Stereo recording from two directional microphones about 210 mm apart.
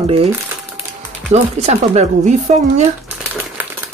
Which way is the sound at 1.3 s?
30° right (ahead or behind).